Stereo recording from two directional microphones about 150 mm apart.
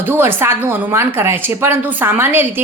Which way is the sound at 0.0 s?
15° right (ahead or behind).